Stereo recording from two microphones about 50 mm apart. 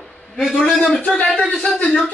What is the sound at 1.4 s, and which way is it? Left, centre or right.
Speech, left.